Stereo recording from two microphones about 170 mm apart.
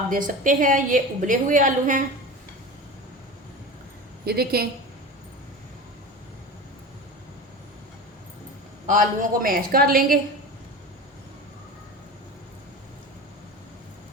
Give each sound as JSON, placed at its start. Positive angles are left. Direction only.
{"t": 0.1, "sound": "a woman's voice", "side_deg": -50}
{"t": 4.3, "sound": "a woman's voice", "side_deg": -65}
{"t": 8.9, "sound": "a woman's voice", "side_deg": -50}